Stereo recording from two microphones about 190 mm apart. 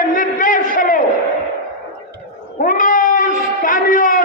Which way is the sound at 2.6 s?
45° left (ahead or behind).